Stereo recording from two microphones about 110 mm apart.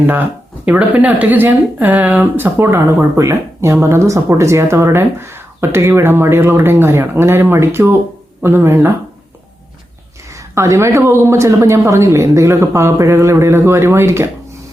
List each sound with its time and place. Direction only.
0.6 s speech: 15° right (ahead or behind)
10.5 s speech: 25° right (ahead or behind)